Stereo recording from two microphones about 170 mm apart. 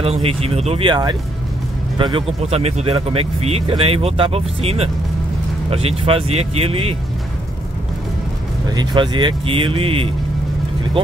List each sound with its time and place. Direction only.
0.0 s speech: 35° right (ahead or behind)
8.6 s speech: 25° right (ahead or behind)